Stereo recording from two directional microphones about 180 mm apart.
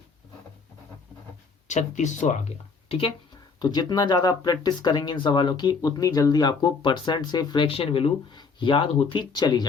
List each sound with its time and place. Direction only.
1.6 s speech: 40° left (ahead or behind)
3.6 s speech: 25° left (ahead or behind)